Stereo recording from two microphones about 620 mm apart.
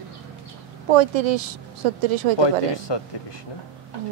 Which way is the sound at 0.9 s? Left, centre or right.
Right.